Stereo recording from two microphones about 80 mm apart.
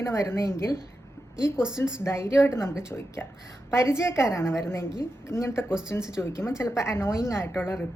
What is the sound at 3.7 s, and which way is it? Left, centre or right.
A woman's voice, left.